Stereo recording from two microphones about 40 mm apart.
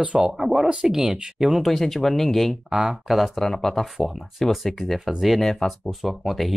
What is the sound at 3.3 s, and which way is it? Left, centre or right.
Speech, centre.